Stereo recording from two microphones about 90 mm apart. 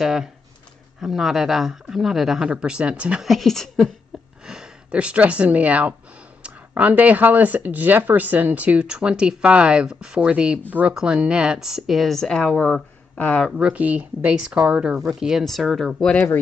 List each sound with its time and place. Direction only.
0.0 s speech: 5° right (ahead or behind)
3.3 s speech: 5° left (ahead or behind)
4.5 s speech: 10° right (ahead or behind); by 13.5 s 15° left (ahead or behind)
13.5 s speech: 10° right (ahead or behind); by 16.2 s 5° left (ahead or behind)